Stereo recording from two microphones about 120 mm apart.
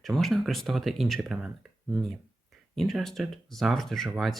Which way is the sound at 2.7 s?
Centre (ahead or behind).